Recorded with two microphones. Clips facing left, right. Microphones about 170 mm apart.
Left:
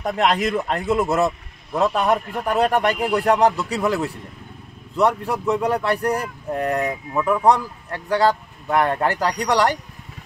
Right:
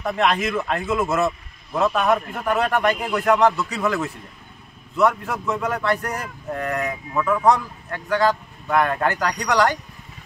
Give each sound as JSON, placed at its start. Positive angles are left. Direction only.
{"t": 0.0, "sound": "speech", "side_deg": 35}